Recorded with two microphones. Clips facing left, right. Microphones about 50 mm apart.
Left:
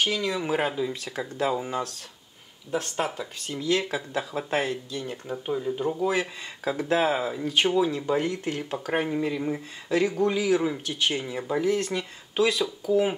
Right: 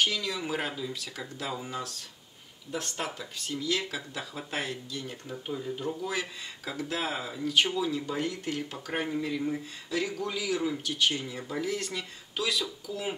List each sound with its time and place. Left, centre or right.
0.0 s speech: centre
1.4 s speech: centre
2.8 s speech: centre
4.2 s speech: left
4.6 s speech: centre
12.4 s speech: left